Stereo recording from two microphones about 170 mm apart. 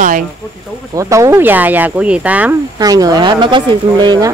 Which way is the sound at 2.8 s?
20° right (ahead or behind).